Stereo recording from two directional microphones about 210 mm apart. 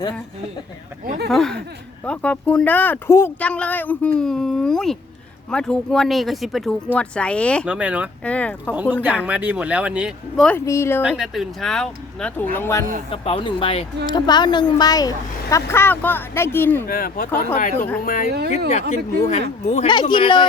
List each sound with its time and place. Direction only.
1.3 s speech: centre (ahead or behind)
7.7 s speech: 5° right (ahead or behind)
8.2 s speech: 5° left (ahead or behind)
8.7 s speech: 10° right (ahead or behind)
10.7 s speech: 10° left (ahead or behind)
11.2 s speech: centre (ahead or behind)
13.1 s speech: 25° left (ahead or behind); by 16.8 s 10° left (ahead or behind)
16.9 s speech: 45° left (ahead or behind)
17.7 s speech: 10° left (ahead or behind)
18.0 s speech: 40° left (ahead or behind)
18.3 s speech: 50° right (ahead or behind)
18.7 s speech: 35° left (ahead or behind)
19.9 s speech: 20° left (ahead or behind)